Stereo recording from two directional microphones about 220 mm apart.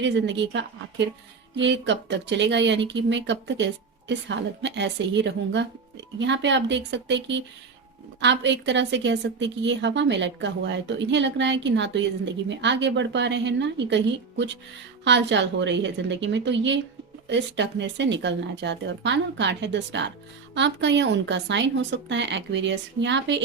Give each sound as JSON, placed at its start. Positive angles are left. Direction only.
{"t": 0.0, "sound": "a woman's voice", "side_deg": -55}